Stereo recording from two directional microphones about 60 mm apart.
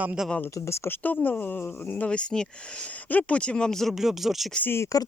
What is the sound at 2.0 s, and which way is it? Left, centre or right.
Speech, centre.